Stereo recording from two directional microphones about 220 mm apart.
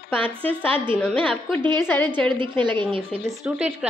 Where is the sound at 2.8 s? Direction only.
25° right (ahead or behind).